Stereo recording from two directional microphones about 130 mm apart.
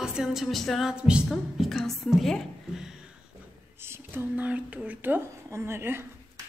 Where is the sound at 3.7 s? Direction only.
20° right (ahead or behind).